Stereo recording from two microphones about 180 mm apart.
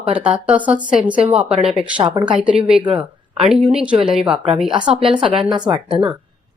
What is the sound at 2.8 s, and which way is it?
Speech, 30° right (ahead or behind).